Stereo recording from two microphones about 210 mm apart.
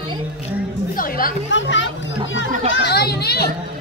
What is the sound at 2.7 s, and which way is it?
Children playing, 50° left (ahead or behind).